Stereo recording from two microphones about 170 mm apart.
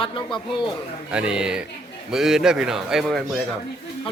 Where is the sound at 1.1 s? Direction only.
5° right (ahead or behind).